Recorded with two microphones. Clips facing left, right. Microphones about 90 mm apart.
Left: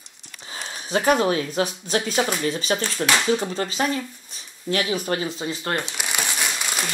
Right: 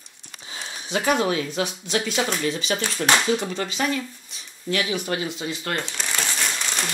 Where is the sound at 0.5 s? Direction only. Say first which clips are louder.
Left 3 dB; 40° left (ahead or behind).